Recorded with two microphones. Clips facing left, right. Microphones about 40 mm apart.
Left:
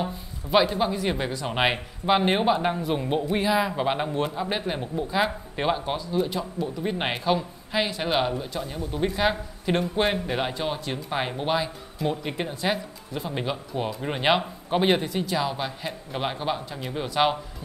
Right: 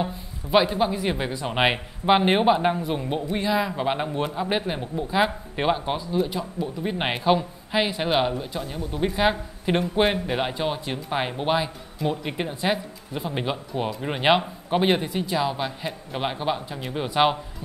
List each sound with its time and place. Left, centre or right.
0.0 s speech: centre
2.9 s a man's voice: centre